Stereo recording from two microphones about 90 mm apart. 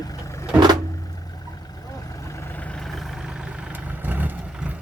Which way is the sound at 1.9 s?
40° left (ahead or behind).